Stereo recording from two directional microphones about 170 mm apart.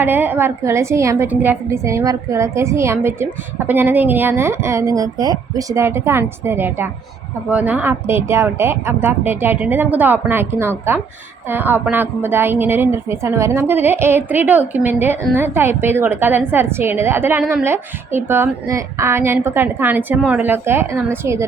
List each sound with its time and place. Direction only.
0.0 s a woman's voice: 10° right (ahead or behind)